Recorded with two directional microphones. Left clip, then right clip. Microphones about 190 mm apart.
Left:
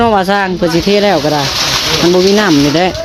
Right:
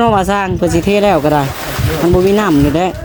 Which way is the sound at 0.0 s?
5° right (ahead or behind).